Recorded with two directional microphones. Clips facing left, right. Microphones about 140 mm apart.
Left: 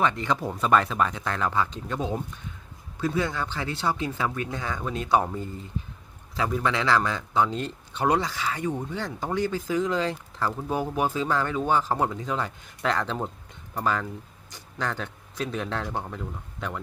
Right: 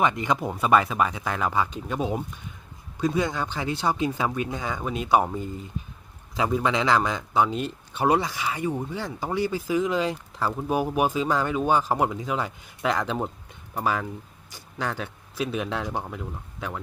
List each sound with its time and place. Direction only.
0.0 s a man's voice: 15° right (ahead or behind)